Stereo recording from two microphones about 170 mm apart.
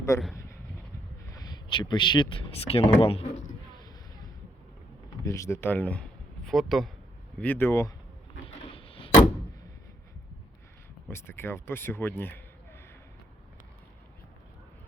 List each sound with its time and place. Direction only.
0.1 s speech: 15° left (ahead or behind)
1.6 s speech: 30° left (ahead or behind)
5.2 s speech: 20° left (ahead or behind)
8.7 s door: 35° left (ahead or behind)
11.1 s speech: 15° left (ahead or behind)